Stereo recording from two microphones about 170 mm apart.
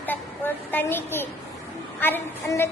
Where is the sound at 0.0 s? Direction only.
10° left (ahead or behind).